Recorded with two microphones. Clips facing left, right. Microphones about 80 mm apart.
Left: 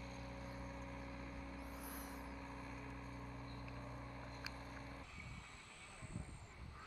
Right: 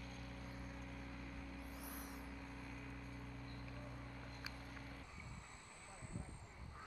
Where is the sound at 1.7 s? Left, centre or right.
Left.